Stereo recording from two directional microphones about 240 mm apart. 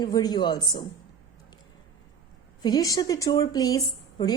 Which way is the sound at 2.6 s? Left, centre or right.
Centre.